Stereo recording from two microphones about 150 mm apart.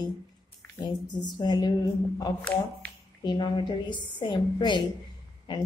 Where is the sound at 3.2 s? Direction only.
30° left (ahead or behind).